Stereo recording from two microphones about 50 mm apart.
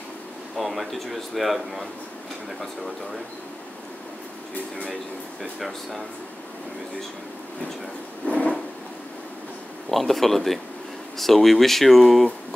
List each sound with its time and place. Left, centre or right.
0.6 s speech: centre
5.4 s speech: centre
8.2 s drawer open or close: left
9.8 s speech: centre